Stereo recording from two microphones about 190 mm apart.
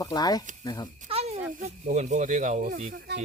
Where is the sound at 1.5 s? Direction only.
35° right (ahead or behind).